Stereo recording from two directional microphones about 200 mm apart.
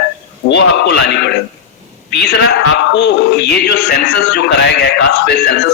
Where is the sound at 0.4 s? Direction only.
60° left (ahead or behind).